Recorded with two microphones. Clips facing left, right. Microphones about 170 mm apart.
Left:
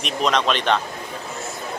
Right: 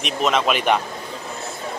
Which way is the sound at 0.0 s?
5° right (ahead or behind).